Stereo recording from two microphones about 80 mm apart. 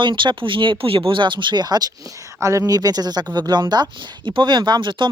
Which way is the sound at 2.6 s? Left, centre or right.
Right.